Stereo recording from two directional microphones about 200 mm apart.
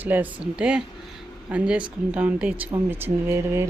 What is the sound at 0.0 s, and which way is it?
Speech, 10° right (ahead or behind).